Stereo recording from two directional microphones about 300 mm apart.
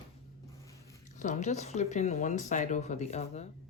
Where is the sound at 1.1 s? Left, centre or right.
Left.